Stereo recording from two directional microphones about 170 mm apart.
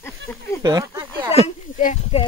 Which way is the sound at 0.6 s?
20° right (ahead or behind).